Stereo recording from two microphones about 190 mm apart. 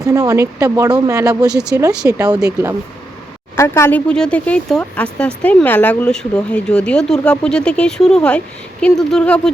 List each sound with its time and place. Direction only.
0.0 s speech: 20° right (ahead or behind)
3.5 s speech: 15° left (ahead or behind)